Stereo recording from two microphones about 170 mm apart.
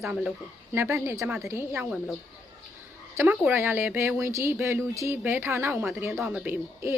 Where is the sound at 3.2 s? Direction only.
10° right (ahead or behind).